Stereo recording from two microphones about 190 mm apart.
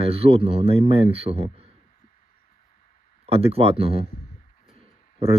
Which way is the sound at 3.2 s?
30° right (ahead or behind).